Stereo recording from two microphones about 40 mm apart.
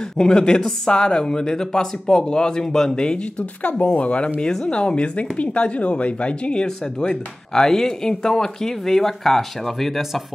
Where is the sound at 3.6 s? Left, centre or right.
Left.